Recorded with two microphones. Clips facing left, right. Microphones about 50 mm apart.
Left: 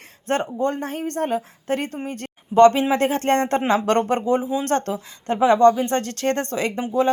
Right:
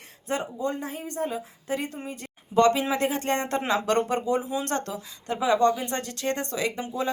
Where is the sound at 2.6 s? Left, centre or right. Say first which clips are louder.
Left 7 dB; left.